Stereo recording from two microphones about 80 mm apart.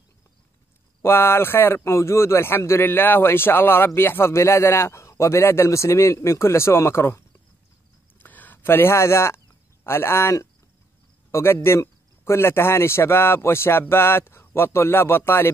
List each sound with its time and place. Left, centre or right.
1.0 s speech: left
8.2 s a sound: left
9.8 s speech: left